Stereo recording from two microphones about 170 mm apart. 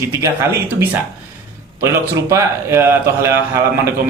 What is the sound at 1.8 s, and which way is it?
A man's voice, 15° right (ahead or behind).